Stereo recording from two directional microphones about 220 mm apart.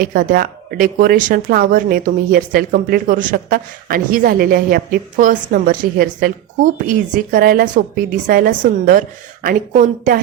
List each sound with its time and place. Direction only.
0.0 s speech: 40° right (ahead or behind)